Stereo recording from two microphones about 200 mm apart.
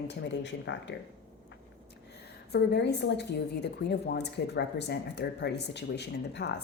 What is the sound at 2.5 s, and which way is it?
A woman's voice, 55° left (ahead or behind).